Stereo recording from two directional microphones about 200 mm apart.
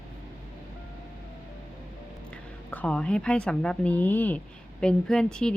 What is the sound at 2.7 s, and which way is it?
Speech, 5° left (ahead or behind).